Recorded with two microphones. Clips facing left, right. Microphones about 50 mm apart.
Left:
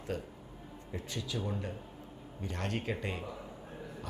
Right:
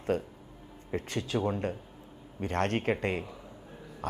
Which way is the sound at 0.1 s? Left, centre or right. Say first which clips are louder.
Right 6 dB; right.